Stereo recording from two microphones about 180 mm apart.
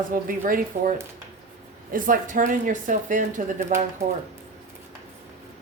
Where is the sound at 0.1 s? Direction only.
50° right (ahead or behind).